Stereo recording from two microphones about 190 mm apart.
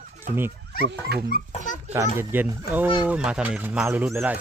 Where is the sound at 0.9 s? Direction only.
60° right (ahead or behind).